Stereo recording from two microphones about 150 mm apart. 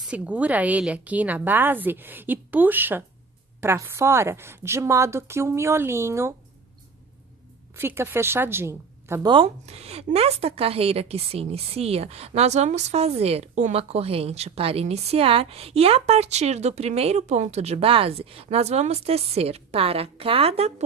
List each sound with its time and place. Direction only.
0.0 s a woman's voice: 10° right (ahead or behind)
7.8 s a woman's voice: 15° right (ahead or behind)
9.2 s a woman's voice: 35° right (ahead or behind)